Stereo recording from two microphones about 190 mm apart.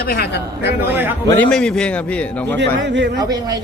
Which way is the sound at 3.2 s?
20° right (ahead or behind).